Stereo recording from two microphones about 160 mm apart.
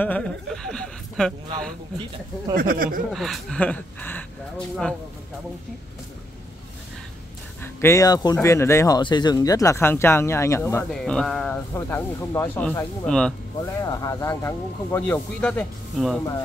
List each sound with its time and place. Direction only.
0.0 s speech: 10° left (ahead or behind)
2.5 s speech: 65° right (ahead or behind)
3.1 s speech: centre (ahead or behind)
7.6 s speech: 20° left (ahead or behind)
10.9 s speech: 5° left (ahead or behind)
13.7 s speech: 20° left (ahead or behind); by 16.2 s 5° left (ahead or behind)